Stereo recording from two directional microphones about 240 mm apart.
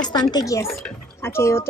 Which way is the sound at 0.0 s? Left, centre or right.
Centre.